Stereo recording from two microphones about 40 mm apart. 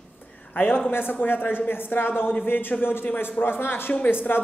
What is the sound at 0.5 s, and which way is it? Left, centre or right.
Speech, left.